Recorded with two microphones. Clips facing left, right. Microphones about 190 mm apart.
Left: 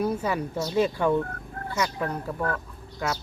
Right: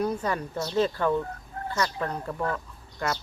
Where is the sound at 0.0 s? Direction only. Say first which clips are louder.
Left 1 dB; 5° left (ahead or behind).